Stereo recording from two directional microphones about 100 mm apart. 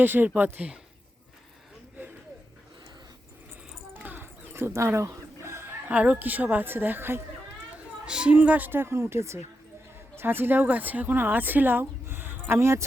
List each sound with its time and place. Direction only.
0.0 s a woman's voice: 20° right (ahead or behind)
3.9 s a sound: 20° right (ahead or behind)
5.9 s speech: 15° right (ahead or behind)
8.0 s a woman's voice: 10° right (ahead or behind); by 12.8 s 25° right (ahead or behind)